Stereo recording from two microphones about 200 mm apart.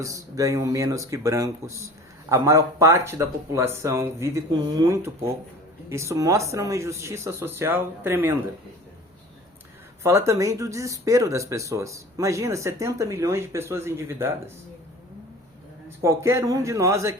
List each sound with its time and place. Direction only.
0.0 s speech: 15° right (ahead or behind)
10.0 s speech: 15° right (ahead or behind)
16.0 s speech: 15° right (ahead or behind)